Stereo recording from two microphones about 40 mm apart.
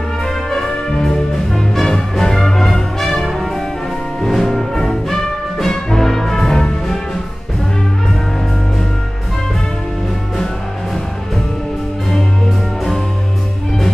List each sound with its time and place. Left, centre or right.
0.5 s brass instrument: centre
1.0 s music: centre